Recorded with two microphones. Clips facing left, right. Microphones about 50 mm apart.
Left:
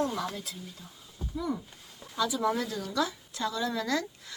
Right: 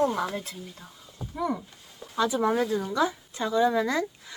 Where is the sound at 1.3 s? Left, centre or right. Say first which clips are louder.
Right 4 dB; right.